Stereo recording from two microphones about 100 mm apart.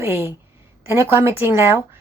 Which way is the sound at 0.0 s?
20° right (ahead or behind).